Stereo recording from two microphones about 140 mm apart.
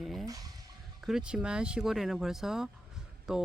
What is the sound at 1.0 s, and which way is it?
Speech, 5° right (ahead or behind).